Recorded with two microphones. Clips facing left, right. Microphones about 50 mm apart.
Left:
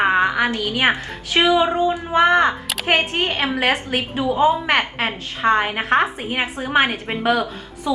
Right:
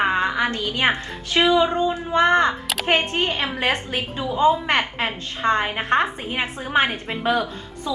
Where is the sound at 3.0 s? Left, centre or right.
Left; by 6.1 s centre.